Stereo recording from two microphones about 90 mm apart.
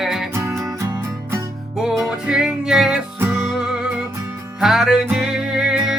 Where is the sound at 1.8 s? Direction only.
5° right (ahead or behind).